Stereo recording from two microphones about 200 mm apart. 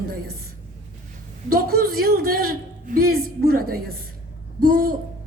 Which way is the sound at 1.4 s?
50° right (ahead or behind).